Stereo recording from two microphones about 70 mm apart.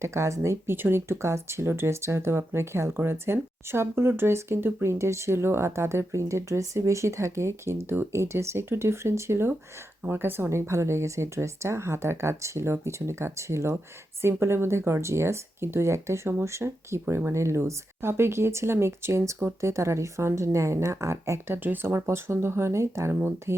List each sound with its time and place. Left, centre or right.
0.0 s a woman's voice: right